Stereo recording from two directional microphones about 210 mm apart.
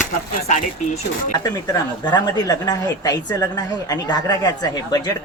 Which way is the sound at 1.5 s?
20° left (ahead or behind).